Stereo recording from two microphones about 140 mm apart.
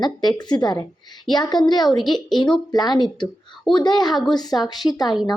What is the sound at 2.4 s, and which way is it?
A woman's voice, 30° left (ahead or behind).